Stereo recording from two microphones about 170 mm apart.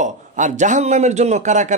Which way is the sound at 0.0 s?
45° right (ahead or behind).